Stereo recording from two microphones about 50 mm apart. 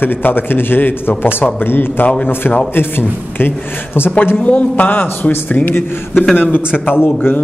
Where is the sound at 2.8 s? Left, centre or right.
Left.